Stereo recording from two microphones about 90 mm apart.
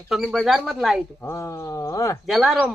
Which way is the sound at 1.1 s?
35° left (ahead or behind).